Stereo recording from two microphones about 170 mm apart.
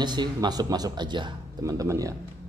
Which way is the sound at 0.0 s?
25° right (ahead or behind).